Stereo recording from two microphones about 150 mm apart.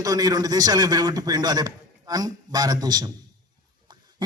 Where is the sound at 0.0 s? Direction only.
25° right (ahead or behind).